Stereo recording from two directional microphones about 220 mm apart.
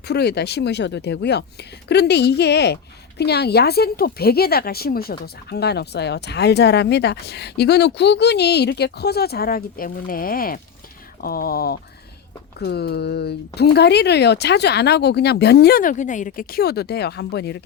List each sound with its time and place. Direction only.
0.1 s speech: 50° left (ahead or behind)